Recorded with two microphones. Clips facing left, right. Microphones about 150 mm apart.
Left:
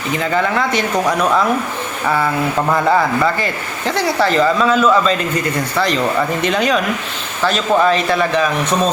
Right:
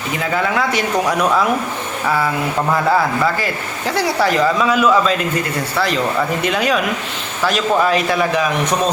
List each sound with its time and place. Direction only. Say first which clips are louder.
0.2 s a man's voice: left 1 dB; 5° right (ahead or behind)
2.0 s a man's voice: left 2 dB; 5° right (ahead or behind)